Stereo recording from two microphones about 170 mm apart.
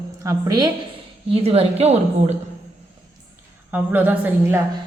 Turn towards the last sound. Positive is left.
turn(degrees=-10)  # may be behind; listen again after turning